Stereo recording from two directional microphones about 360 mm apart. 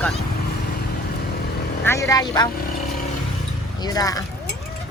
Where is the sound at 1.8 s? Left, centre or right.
Centre.